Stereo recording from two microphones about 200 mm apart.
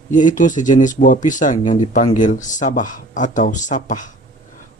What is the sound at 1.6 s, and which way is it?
Speech, 25° left (ahead or behind).